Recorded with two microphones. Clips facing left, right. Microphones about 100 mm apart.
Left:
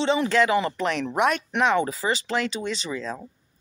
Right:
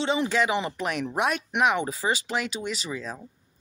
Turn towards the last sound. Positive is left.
turn(degrees=-5)  # may be behind; listen again after turning